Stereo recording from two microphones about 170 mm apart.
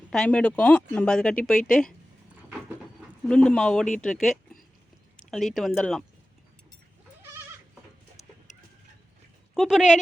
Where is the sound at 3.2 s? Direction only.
5° left (ahead or behind).